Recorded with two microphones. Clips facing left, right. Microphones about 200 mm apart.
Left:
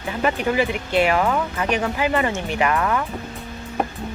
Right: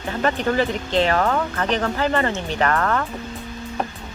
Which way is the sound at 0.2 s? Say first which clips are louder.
Even; 10° left (ahead or behind).